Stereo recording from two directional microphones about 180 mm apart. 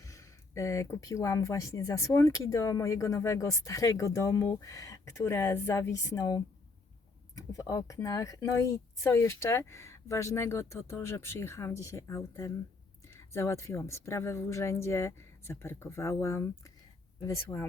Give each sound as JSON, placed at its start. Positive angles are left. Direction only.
{"t": 0.0, "sound": "speech", "side_deg": 20}